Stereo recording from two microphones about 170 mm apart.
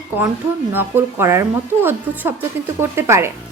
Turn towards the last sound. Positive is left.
turn(degrees=-15)  # may be behind; listen again after turning